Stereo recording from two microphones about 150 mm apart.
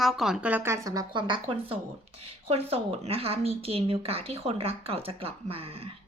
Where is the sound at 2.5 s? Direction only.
45° right (ahead or behind).